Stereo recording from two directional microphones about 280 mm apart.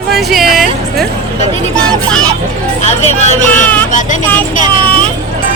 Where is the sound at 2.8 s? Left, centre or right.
Left.